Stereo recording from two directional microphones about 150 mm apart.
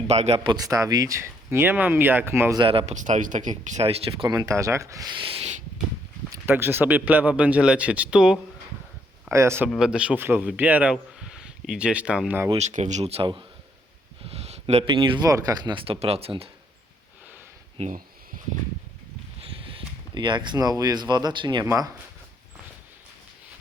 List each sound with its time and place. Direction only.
0.1 s speech: 45° right (ahead or behind)
0.4 s speech: 25° right (ahead or behind)
2.6 s speech: 40° right (ahead or behind)
2.9 s speech: 55° right (ahead or behind); by 4.3 s 40° right (ahead or behind)
4.3 s speech: 20° right (ahead or behind); by 5.5 s 40° right (ahead or behind)
6.3 s speech: 15° right (ahead or behind)
9.3 s speech: 20° right (ahead or behind)
9.6 s speech: 5° right (ahead or behind)
10.9 s a sound: 5° right (ahead or behind)
12.5 s speech: 50° right (ahead or behind)
14.3 s a sound: 45° right (ahead or behind)
14.8 s speech: 35° right (ahead or behind)
17.7 s speech: 55° right (ahead or behind)
19.4 s speech: 35° right (ahead or behind)